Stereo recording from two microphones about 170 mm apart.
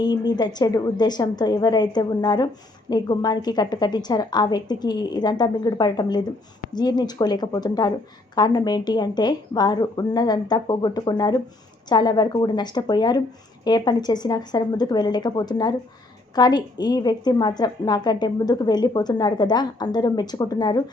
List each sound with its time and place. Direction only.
0.0 s a woman's voice: 25° left (ahead or behind)